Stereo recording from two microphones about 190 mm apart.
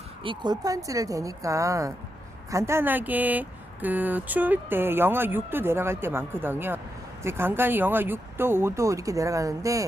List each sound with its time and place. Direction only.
0.3 s speech: 20° right (ahead or behind)